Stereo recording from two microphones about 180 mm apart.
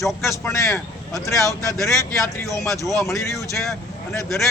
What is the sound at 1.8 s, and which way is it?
Speech, 15° left (ahead or behind).